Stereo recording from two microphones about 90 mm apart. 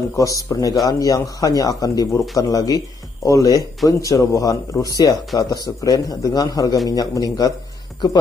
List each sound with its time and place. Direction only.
0.1 s a man's voice: 40° left (ahead or behind)